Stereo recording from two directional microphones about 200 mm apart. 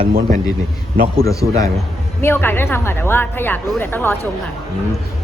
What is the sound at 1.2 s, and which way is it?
A woman's voice, 15° left (ahead or behind).